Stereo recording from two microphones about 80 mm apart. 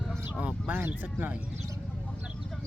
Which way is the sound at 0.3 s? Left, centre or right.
Centre.